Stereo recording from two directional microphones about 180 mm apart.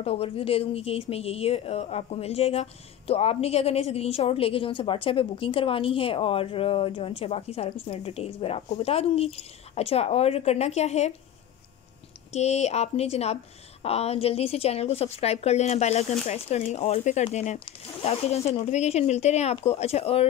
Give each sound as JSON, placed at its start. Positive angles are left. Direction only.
{"t": 0.0, "sound": "speech", "side_deg": 30}
{"t": 12.3, "sound": "speech", "side_deg": 35}